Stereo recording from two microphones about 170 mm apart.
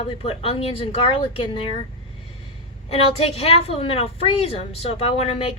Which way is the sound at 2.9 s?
35° left (ahead or behind).